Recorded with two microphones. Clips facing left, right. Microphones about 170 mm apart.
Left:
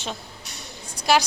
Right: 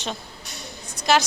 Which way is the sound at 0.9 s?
10° left (ahead or behind).